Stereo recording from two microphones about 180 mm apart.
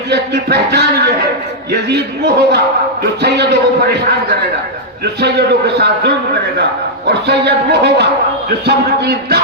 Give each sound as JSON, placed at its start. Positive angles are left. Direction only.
{"t": 0.1, "sound": "a man's voice", "side_deg": -65}
{"t": 5.2, "sound": "speech", "side_deg": -70}
{"t": 7.1, "sound": "a man's voice", "side_deg": -65}